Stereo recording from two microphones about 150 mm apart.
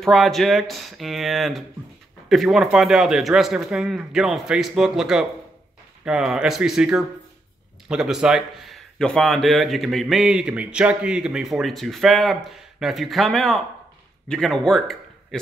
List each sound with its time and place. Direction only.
0.0 s a man's voice: centre (ahead or behind)